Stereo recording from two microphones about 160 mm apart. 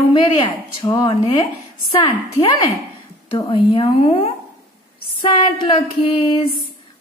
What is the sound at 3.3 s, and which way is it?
A woman's voice, 30° left (ahead or behind).